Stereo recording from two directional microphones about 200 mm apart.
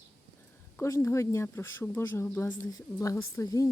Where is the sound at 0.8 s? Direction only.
15° left (ahead or behind).